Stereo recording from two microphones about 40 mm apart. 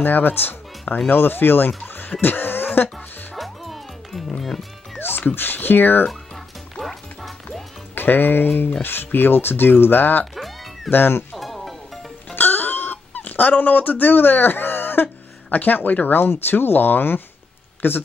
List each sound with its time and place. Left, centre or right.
0.0 s speech: left
3.3 s music: centre
4.4 s speech: centre
4.9 s music: left
5.3 s speech: left
6.0 s music: centre
7.9 s speech: left
10.3 s music: centre
10.9 s speech: left
11.3 s music: centre
12.4 s a sound: left
15.5 s speech: left
16.2 s speech: left